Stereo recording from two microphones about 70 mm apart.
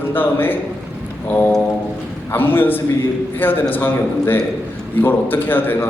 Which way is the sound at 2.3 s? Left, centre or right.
Left.